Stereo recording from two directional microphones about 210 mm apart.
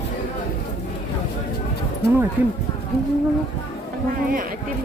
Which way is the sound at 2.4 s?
10° right (ahead or behind).